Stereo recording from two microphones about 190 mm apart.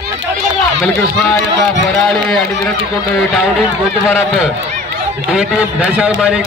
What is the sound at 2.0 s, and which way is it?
Speech, centre (ahead or behind).